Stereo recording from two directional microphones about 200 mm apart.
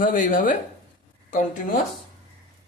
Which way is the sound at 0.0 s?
40° left (ahead or behind).